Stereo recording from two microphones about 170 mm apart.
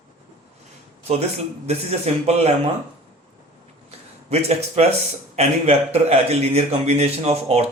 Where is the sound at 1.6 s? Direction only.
40° right (ahead or behind).